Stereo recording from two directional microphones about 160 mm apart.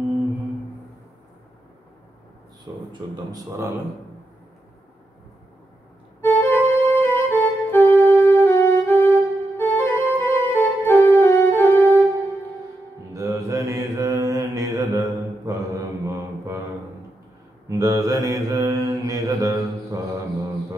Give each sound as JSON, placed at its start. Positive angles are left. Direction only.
{"t": 2.9, "sound": "a man's voice", "side_deg": -20}
{"t": 6.2, "sound": "music", "side_deg": 10}
{"t": 13.1, "sound": "mantra", "side_deg": -20}
{"t": 17.6, "sound": "mantra", "side_deg": -20}